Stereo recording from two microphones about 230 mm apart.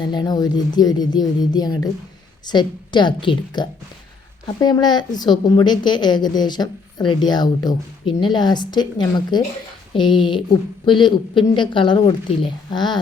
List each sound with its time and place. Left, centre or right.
0.0 s a woman's voice: centre